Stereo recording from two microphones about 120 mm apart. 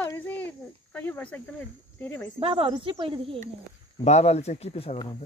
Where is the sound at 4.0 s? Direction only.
70° left (ahead or behind); by 5.1 s 55° left (ahead or behind).